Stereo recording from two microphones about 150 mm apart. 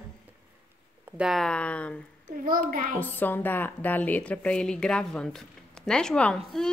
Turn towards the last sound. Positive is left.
turn(degrees=5)  # may be behind; listen again after turning